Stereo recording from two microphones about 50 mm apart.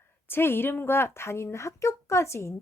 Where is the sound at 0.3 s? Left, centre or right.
Left.